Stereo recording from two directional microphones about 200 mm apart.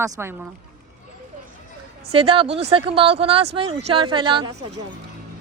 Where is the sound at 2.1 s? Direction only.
30° right (ahead or behind).